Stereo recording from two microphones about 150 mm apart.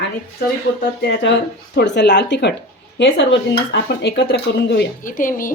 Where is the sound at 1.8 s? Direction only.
90° left.